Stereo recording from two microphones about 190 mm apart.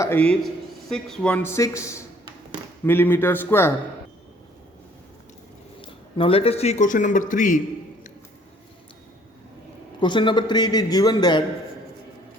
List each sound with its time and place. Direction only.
0.0 s speech: 10° left (ahead or behind)
5.8 s speech: 30° left (ahead or behind)
10.0 s a man's voice: 25° left (ahead or behind)